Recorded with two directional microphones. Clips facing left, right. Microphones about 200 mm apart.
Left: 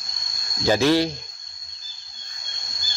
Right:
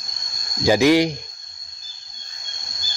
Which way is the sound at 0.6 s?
15° right (ahead or behind).